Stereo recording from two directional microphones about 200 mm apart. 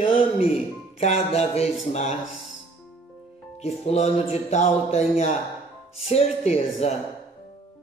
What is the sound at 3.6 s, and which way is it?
Speech, 30° left (ahead or behind).